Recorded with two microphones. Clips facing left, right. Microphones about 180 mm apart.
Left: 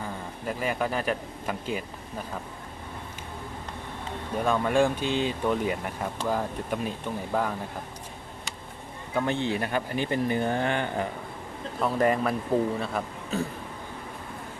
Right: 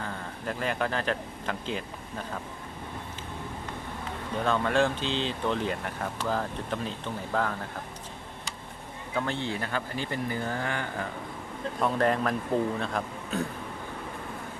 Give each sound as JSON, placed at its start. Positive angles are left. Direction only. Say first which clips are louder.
{"t": 0.0, "sound": "speech", "louder": "left 1 dB", "side_deg": 10}
{"t": 4.4, "sound": "speech", "louder": "left 2 dB", "side_deg": 10}
{"t": 9.1, "sound": "speech", "louder": "left 4 dB", "side_deg": 15}
{"t": 11.8, "sound": "a man's voice", "louder": "left 2 dB", "side_deg": 5}